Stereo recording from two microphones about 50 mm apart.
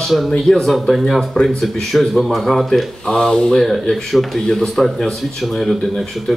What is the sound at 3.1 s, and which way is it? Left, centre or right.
Speech, centre.